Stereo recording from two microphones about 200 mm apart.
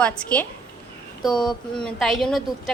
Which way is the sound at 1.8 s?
Centre (ahead or behind).